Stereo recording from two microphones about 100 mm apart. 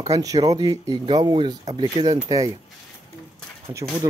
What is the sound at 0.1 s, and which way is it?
Speech, 35° right (ahead or behind).